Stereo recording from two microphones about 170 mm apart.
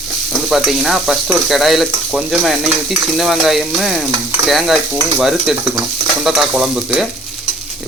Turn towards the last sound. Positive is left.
turn(degrees=0)  # may be behind; listen again after turning